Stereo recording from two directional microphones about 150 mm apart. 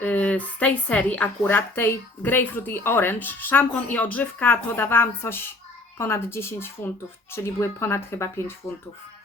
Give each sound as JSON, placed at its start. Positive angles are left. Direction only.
{"t": 0.0, "sound": "speech", "side_deg": 10}